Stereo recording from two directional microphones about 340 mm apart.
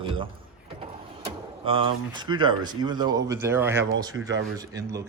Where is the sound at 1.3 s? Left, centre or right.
Centre.